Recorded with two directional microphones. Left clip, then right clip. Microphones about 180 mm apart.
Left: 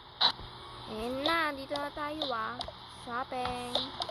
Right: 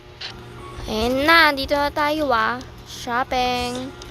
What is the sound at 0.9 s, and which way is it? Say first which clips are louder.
Speech: right 15 dB; 10° right (ahead or behind).